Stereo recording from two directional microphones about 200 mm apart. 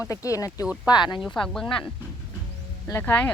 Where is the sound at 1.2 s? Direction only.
Centre (ahead or behind).